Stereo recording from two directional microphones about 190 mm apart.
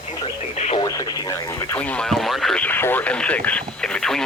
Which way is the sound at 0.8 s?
20° left (ahead or behind).